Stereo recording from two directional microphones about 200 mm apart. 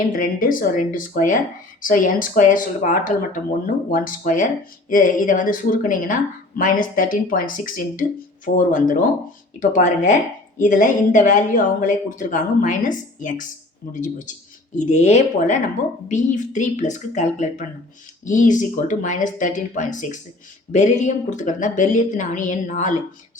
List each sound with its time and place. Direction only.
0.2 s speech: 45° left (ahead or behind)